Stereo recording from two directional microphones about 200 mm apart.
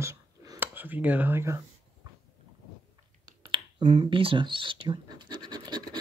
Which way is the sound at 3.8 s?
35° right (ahead or behind).